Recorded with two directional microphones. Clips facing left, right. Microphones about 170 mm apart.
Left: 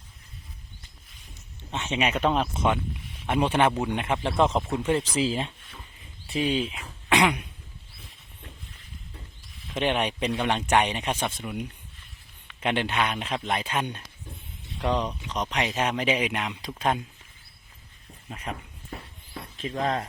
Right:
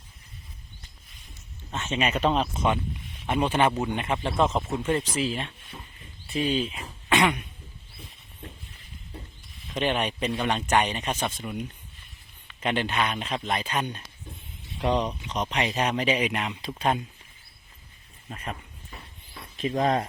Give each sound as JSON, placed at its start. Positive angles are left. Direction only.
{"t": 1.7, "sound": "speech", "side_deg": 15}
{"t": 2.0, "sound": "speech", "side_deg": 5}
{"t": 4.2, "sound": "speech", "side_deg": -5}
{"t": 4.7, "sound": "speech", "side_deg": 10}
{"t": 6.2, "sound": "speech", "side_deg": 10}
{"t": 7.1, "sound": "throat clearing", "side_deg": 10}
{"t": 9.6, "sound": "speech", "side_deg": 5}
{"t": 10.3, "sound": "speech", "side_deg": 0}
{"t": 10.7, "sound": "speech", "side_deg": 10}
{"t": 12.8, "sound": "speech", "side_deg": 10}
{"t": 14.8, "sound": "speech", "side_deg": -10}
{"t": 18.3, "sound": "speech", "side_deg": 10}
{"t": 19.5, "sound": "speech", "side_deg": -15}